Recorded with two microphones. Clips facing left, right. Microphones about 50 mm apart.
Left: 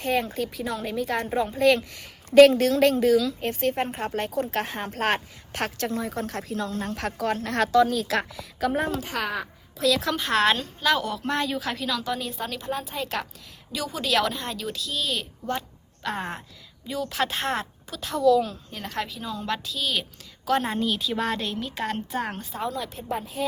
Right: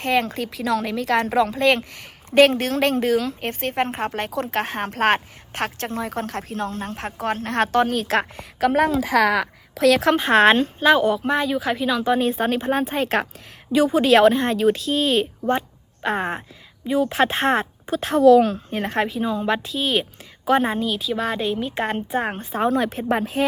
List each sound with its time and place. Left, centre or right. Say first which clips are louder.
0.0 s a woman's voice: right 4 dB; right
0.6 s a woman's voice: right 10 dB; right
1.5 s a woman's voice: right 1 dB; right
10.2 s speech: right 7 dB; right
11.2 s speech: right 5 dB; centre; by 13.2 s right
13.7 s speech: right 10 dB; right
20.7 s speech: right 2 dB; centre
21.3 s a woman's voice: right 6 dB; centre; by 23.5 s right